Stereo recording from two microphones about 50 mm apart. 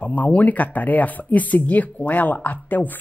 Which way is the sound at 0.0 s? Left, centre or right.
Left.